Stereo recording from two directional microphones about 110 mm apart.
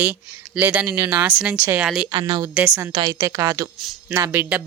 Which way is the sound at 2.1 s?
45° right (ahead or behind).